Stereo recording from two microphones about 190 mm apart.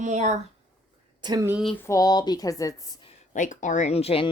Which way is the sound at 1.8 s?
15° left (ahead or behind).